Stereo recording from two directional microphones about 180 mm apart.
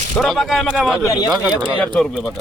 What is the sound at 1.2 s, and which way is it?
Speech, 5° right (ahead or behind).